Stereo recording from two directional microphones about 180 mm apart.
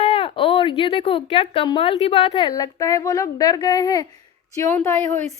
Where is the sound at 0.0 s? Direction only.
30° left (ahead or behind).